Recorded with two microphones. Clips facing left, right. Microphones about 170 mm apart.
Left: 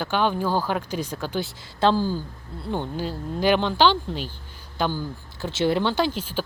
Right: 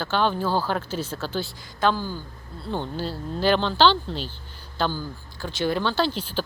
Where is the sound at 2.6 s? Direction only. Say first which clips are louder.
Left 1 dB; 15° left (ahead or behind).